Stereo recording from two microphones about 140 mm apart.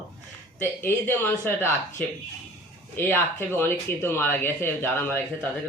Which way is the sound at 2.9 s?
15° left (ahead or behind).